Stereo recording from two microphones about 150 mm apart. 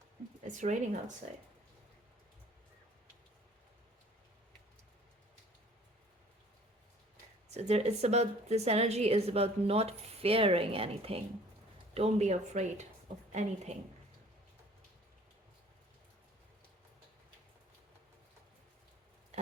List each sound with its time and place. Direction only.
0.4 s speech: 55° right (ahead or behind)
7.5 s a woman's voice: 45° right (ahead or behind)